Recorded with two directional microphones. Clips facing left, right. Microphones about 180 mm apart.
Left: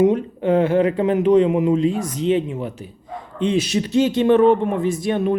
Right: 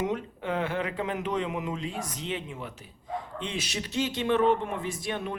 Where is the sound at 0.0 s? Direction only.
35° left (ahead or behind).